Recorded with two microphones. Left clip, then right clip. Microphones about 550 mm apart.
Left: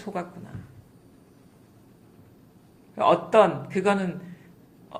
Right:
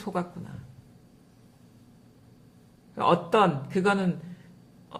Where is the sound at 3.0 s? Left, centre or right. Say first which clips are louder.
Left 4 dB; right.